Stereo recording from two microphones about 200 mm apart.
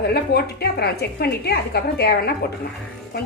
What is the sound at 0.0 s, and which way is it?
A woman's voice, 50° left (ahead or behind).